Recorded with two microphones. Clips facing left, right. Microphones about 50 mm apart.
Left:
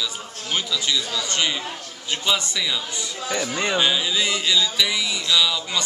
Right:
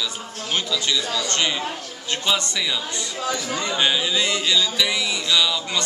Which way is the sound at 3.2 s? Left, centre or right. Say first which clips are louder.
Left 2 dB; left.